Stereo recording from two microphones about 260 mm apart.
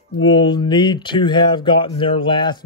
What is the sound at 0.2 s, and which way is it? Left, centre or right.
Speech, centre.